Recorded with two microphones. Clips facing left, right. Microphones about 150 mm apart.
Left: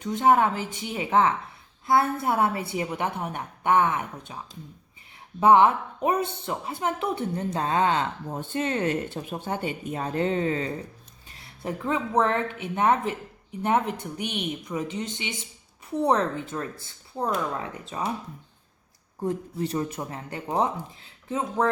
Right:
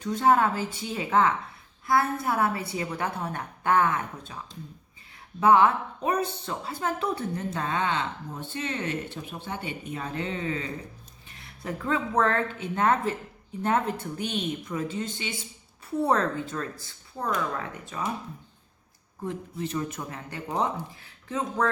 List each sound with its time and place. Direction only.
0.0 s speech: 20° left (ahead or behind)
5.4 s speech: 25° left (ahead or behind)
7.5 s speech: 35° left (ahead or behind)
11.3 s speech: 25° left (ahead or behind)
19.2 s speech: 40° left (ahead or behind); by 21.7 s 20° left (ahead or behind)